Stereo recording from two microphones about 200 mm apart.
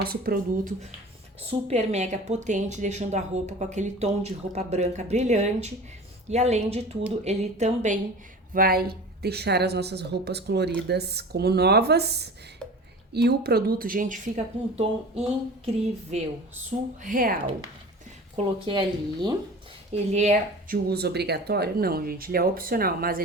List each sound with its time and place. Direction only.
0.0 s speech: 50° right (ahead or behind)
1.5 s speech: 30° right (ahead or behind)
8.5 s speech: 50° right (ahead or behind)
18.3 s speech: 25° right (ahead or behind)
19.9 s speech: 35° right (ahead or behind)